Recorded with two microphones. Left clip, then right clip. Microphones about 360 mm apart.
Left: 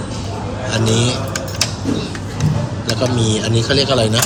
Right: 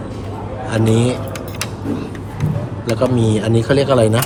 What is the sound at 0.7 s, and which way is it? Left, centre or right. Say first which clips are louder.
Speech: right 1 dB; right.